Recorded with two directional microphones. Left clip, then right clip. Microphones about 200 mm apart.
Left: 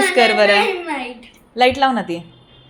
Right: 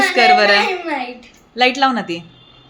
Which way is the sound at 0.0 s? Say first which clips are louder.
Right 2 dB; centre (ahead or behind).